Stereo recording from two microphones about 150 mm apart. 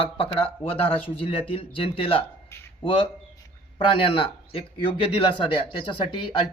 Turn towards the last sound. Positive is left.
turn(degrees=35)  # may be behind; listen again after turning